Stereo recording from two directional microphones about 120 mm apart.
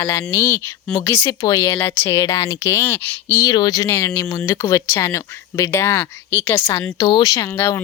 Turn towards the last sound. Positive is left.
turn(degrees=20)  # may be behind; listen again after turning